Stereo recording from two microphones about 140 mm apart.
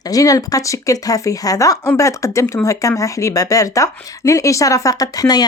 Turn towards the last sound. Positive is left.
turn(degrees=25)  # may be behind; listen again after turning